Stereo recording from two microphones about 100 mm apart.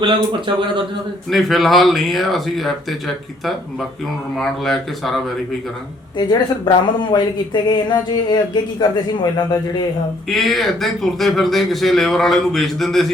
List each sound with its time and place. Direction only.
0.0 s a man's voice: 55° right (ahead or behind)
1.3 s a man's voice: centre (ahead or behind)
4.4 s a man's voice: centre (ahead or behind)
6.1 s speech: 45° left (ahead or behind)
10.2 s a man's voice: centre (ahead or behind)